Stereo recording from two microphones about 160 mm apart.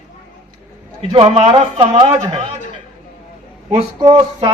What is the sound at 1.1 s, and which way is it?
A man's voice, 35° right (ahead or behind).